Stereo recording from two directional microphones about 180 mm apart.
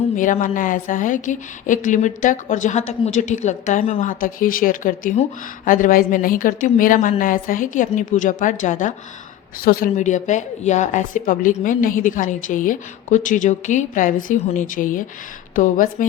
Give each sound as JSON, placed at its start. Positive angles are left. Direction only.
{"t": 0.2, "sound": "speech", "side_deg": 45}
{"t": 4.2, "sound": "speech", "side_deg": 50}